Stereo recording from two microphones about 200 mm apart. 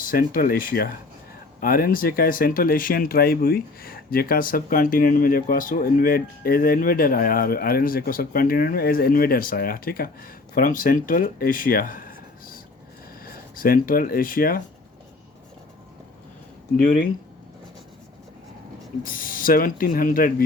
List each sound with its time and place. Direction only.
0.0 s a sound: 45° left (ahead or behind)
0.3 s speech: 45° left (ahead or behind)
13.2 s speech: 45° left (ahead or behind)
16.8 s speech: 45° left (ahead or behind)
19.0 s speech: 45° left (ahead or behind)